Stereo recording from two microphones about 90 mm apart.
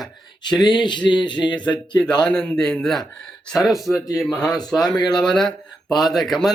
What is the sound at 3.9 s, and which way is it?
Speech, 40° left (ahead or behind).